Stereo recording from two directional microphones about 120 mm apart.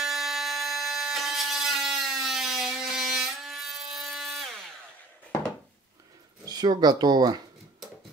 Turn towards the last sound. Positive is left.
turn(degrees=-35)  # may be behind; listen again after turning